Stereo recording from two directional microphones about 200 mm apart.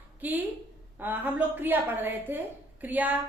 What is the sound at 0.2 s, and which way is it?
Speech, 10° right (ahead or behind).